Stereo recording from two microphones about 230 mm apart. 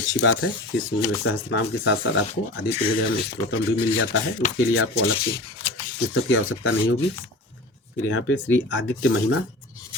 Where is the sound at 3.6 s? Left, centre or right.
Left.